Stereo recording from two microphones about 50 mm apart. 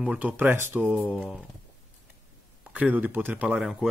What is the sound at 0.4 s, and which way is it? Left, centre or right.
Speech, right.